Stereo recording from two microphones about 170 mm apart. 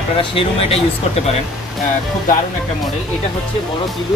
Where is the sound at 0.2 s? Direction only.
30° left (ahead or behind).